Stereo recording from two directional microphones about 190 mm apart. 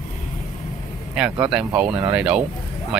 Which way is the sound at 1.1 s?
5° right (ahead or behind).